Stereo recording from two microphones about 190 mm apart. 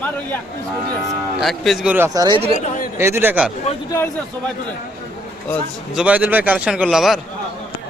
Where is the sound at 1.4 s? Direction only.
Centre (ahead or behind); by 2.4 s 20° right (ahead or behind).